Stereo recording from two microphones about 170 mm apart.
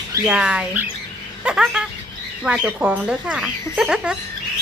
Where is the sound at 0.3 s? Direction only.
5° right (ahead or behind).